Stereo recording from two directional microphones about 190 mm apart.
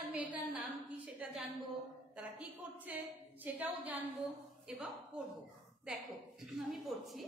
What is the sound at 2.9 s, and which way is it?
A woman's voice, 10° right (ahead or behind).